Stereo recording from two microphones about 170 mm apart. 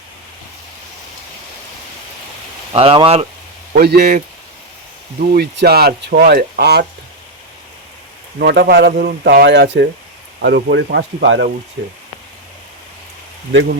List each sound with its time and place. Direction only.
2.7 s speech: 35° right (ahead or behind)
3.7 s speech: 65° right (ahead or behind)
5.2 s speech: 65° right (ahead or behind)
8.4 s speech: 80° right